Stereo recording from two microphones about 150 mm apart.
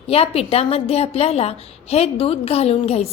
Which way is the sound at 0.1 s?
40° left (ahead or behind).